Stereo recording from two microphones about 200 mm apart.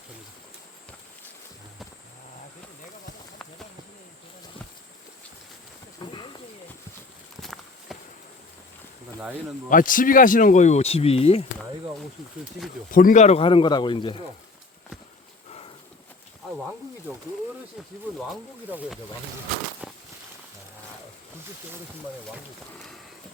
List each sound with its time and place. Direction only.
6.0 s a sound: 25° left (ahead or behind)
7.4 s walk: centre (ahead or behind)
9.6 s speech: 40° left (ahead or behind)
12.9 s speech: 45° left (ahead or behind); by 14.3 s 25° left (ahead or behind)
18.2 s speech: 5° right (ahead or behind)
19.8 s a sound: centre (ahead or behind)